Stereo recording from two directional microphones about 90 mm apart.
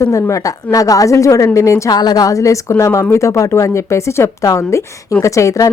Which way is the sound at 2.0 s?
45° left (ahead or behind).